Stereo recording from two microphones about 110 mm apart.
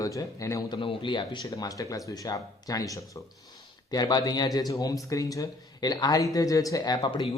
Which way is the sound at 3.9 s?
40° left (ahead or behind).